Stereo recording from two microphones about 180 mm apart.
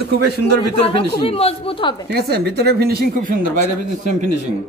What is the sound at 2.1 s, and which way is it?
Speech, 65° right (ahead or behind).